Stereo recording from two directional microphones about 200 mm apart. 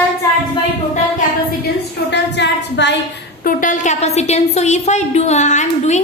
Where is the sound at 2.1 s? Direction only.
60° left (ahead or behind).